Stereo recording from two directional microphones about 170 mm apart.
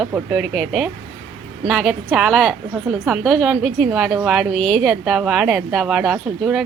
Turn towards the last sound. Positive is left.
turn(degrees=0)  # may be behind; listen again after turning